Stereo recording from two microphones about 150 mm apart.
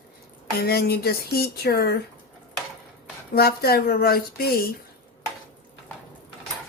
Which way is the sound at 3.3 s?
90° left.